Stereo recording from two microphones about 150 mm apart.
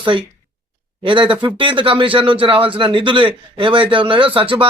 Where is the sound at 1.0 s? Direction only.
35° right (ahead or behind).